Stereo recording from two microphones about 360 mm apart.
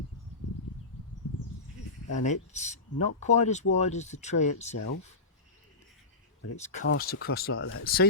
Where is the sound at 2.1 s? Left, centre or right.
Centre.